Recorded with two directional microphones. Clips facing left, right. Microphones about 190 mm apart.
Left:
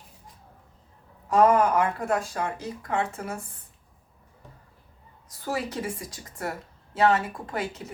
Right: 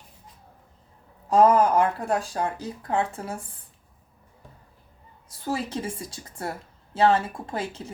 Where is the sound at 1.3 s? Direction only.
30° right (ahead or behind).